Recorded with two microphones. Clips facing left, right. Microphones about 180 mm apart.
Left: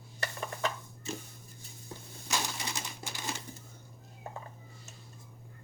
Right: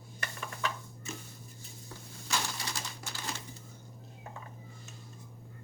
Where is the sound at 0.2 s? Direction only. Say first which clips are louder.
Left 3 dB; 35° left (ahead or behind).